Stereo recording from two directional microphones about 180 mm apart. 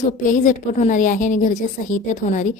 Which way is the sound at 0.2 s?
45° left (ahead or behind).